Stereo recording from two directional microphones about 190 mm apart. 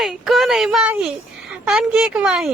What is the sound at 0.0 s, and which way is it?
A woman's voice, centre (ahead or behind).